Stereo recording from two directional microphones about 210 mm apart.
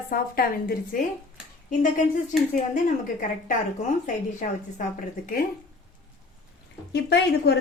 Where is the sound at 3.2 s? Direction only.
40° left (ahead or behind).